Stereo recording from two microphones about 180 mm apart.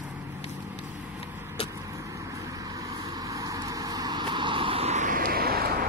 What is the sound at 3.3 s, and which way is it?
Vehicle, 20° right (ahead or behind).